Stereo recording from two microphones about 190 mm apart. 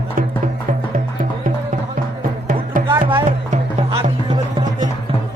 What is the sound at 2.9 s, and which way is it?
Music, 25° right (ahead or behind).